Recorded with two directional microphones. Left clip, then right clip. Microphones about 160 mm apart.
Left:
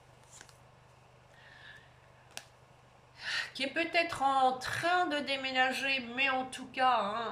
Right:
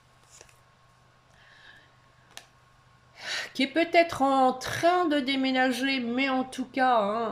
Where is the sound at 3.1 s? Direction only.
40° right (ahead or behind).